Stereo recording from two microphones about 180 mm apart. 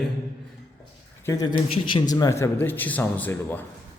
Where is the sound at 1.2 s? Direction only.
20° left (ahead or behind).